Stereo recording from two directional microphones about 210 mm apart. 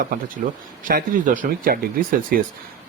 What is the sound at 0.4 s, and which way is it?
Speech, 45° right (ahead or behind).